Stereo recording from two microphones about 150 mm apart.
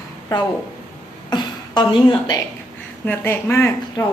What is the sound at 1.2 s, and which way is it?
Speech, 30° left (ahead or behind).